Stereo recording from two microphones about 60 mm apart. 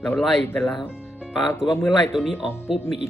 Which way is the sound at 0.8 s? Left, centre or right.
Centre.